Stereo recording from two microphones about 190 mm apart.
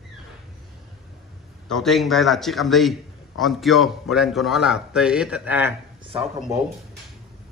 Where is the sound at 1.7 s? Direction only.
Centre (ahead or behind).